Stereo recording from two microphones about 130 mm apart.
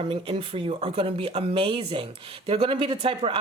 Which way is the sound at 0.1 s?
40° right (ahead or behind).